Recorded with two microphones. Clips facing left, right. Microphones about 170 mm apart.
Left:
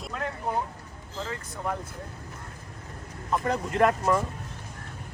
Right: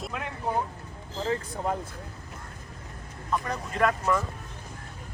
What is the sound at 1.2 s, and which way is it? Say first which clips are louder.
Speech: right 5 dB; 35° right (ahead or behind).